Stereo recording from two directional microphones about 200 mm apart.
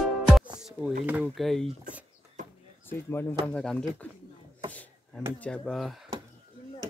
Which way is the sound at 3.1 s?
10° left (ahead or behind).